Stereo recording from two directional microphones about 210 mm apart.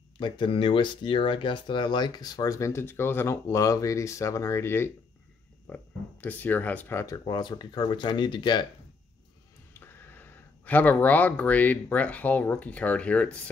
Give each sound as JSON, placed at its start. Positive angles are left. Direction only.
{"t": 0.2, "sound": "speech", "side_deg": 20}
{"t": 9.8, "sound": "speech", "side_deg": 10}